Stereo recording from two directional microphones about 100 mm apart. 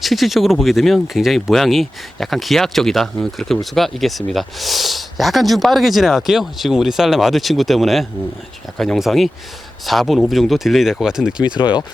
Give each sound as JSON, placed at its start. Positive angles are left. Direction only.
{"t": 0.0, "sound": "speech", "side_deg": 0}
{"t": 11.4, "sound": "speech", "side_deg": 50}